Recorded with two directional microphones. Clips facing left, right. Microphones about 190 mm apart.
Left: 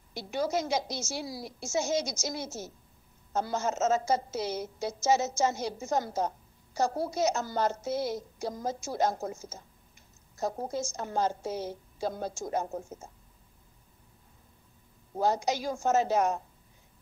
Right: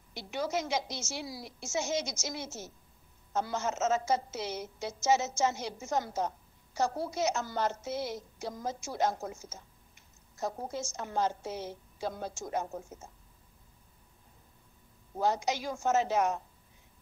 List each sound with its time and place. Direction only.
0.1 s a woman's voice: 40° left (ahead or behind)
15.1 s a woman's voice: 40° left (ahead or behind)